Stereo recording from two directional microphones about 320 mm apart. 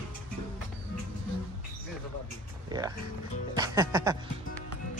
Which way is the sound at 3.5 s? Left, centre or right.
Centre.